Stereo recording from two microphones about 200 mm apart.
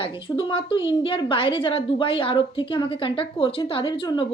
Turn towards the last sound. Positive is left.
turn(degrees=25)  # may be behind; listen again after turning